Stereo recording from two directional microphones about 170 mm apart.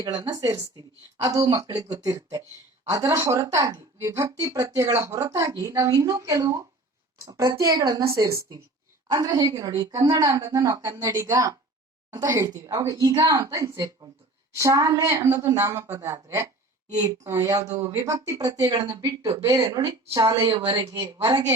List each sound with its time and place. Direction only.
0.1 s a woman's voice: 25° right (ahead or behind)